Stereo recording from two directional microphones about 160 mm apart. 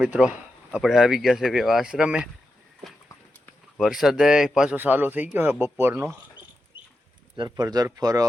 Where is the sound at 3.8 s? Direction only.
Centre (ahead or behind).